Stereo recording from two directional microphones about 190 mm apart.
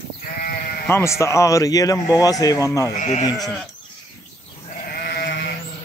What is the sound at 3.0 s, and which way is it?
Speech, 40° left (ahead or behind).